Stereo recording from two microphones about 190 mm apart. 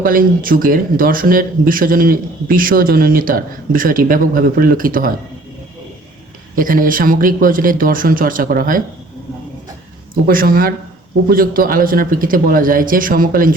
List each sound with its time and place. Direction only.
0.0 s speech: 50° right (ahead or behind)
6.6 s speech: 45° right (ahead or behind)
10.2 s speech: 50° right (ahead or behind)